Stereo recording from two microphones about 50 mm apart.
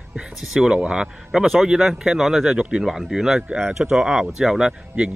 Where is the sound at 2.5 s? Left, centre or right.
Right.